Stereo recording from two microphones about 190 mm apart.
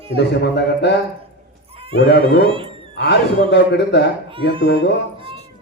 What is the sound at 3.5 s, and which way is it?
A man's voice, 65° left (ahead or behind).